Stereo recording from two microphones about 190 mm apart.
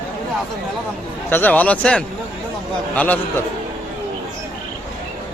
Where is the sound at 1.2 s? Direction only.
10° left (ahead or behind).